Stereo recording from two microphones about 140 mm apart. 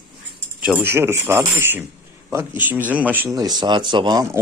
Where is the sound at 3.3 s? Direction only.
30° right (ahead or behind).